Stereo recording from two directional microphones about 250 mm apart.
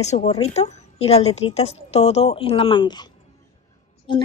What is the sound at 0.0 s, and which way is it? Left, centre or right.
A woman's voice, left.